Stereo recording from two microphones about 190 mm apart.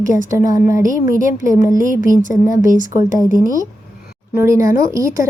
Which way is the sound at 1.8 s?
45° right (ahead or behind).